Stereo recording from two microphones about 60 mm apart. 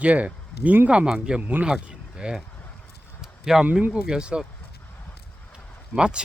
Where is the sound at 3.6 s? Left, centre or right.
Right.